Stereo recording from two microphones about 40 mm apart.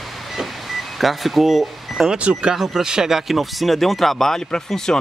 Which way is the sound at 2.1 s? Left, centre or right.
Right.